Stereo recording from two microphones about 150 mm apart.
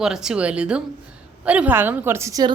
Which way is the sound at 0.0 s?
5° right (ahead or behind).